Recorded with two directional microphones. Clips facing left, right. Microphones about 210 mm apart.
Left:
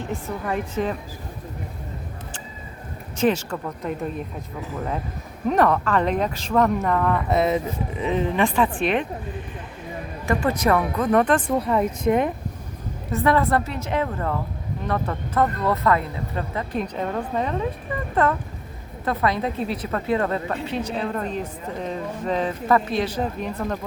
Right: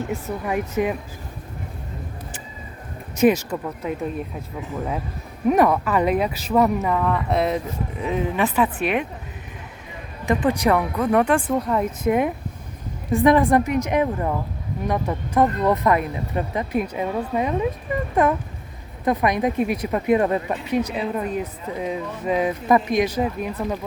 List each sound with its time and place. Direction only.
0.1 s speech: 10° right (ahead or behind)
3.2 s speech: 10° right (ahead or behind)
5.5 s speech: 10° right (ahead or behind)
10.2 s speech: 15° right (ahead or behind)
11.5 s speech: centre (ahead or behind)